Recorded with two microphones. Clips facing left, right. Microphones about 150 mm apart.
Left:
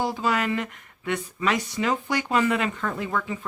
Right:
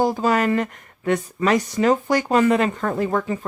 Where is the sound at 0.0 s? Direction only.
45° right (ahead or behind).